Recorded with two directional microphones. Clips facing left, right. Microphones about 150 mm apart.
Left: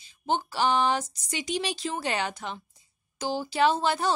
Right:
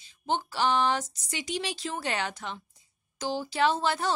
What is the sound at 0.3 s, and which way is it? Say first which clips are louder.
A woman's voice: left 2 dB; 10° left (ahead or behind).